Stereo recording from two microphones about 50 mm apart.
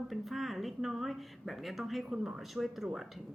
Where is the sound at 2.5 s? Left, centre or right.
Centre.